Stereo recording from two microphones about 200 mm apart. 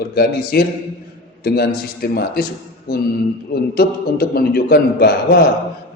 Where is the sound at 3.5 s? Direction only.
50° left (ahead or behind).